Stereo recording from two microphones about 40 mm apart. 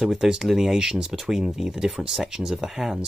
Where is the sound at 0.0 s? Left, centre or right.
Centre.